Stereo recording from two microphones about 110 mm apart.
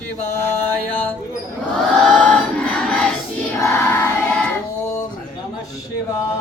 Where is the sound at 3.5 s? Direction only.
30° left (ahead or behind).